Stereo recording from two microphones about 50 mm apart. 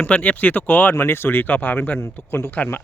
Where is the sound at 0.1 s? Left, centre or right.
Left.